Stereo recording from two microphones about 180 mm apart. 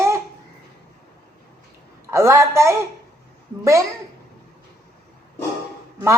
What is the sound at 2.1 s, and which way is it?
Speech, 15° right (ahead or behind).